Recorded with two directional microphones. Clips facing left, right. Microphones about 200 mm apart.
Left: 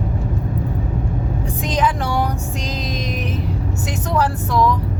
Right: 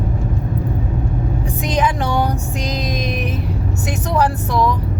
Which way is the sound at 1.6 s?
15° right (ahead or behind).